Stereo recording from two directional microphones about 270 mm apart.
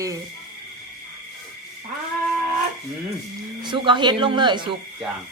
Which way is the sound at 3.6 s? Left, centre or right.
Centre.